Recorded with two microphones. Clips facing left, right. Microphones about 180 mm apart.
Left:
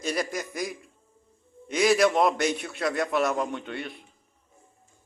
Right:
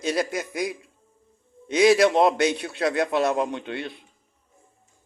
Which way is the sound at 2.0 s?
25° right (ahead or behind).